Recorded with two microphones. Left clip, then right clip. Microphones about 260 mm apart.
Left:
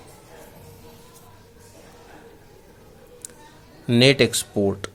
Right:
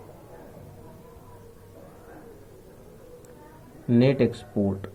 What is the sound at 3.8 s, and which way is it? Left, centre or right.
Speech, left.